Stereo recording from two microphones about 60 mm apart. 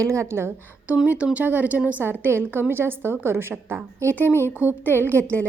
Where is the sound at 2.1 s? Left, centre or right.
Right.